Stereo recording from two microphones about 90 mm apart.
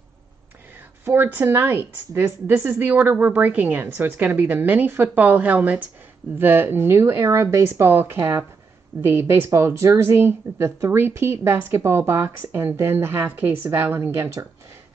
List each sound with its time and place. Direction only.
1.0 s a woman's voice: 25° right (ahead or behind)